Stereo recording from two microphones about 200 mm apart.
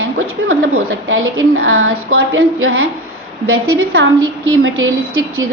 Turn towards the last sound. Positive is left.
turn(degrees=-85)